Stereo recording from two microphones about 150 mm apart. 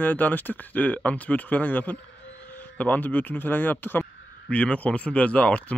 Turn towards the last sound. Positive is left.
turn(degrees=10)  # may be behind; listen again after turning